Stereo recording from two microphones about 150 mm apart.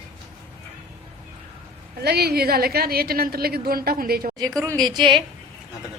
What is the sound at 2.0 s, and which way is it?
A woman's voice, 90° right.